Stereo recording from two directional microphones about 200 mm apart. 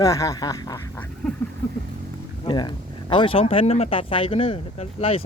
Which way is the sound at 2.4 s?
20° left (ahead or behind).